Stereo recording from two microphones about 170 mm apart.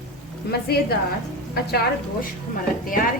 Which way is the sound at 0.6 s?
65° left (ahead or behind).